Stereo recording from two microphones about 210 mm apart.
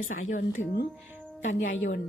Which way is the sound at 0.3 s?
45° left (ahead or behind).